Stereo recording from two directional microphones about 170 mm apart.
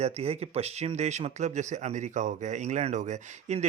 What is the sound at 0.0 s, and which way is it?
Speech, 35° right (ahead or behind).